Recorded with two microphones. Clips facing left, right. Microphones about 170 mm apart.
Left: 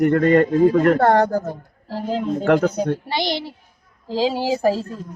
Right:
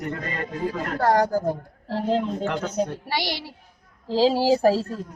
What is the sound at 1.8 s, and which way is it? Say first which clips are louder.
Speech: left 1 dB; centre (ahead or behind).